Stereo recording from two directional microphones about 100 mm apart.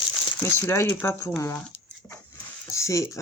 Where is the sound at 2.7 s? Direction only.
30° left (ahead or behind).